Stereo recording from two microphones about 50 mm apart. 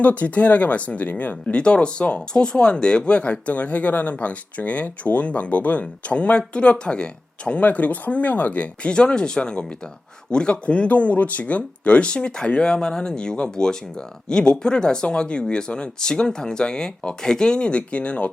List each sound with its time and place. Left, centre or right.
0.0 s speech: left
7.6 s speech: left
8.9 s speech: centre